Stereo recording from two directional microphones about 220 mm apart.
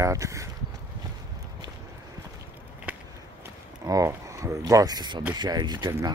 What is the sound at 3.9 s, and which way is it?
Speech, 15° right (ahead or behind).